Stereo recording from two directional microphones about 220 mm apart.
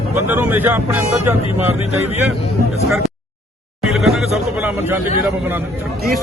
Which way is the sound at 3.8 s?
Centre (ahead or behind).